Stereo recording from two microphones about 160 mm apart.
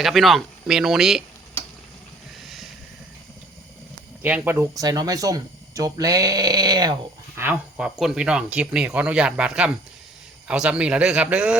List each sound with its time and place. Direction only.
0.0 s speech: centre (ahead or behind)
4.2 s speech: 10° right (ahead or behind); by 6.9 s 25° right (ahead or behind)
7.3 s speech: 10° right (ahead or behind)